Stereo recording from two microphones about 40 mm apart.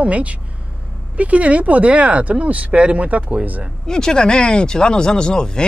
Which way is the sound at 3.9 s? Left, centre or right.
Centre.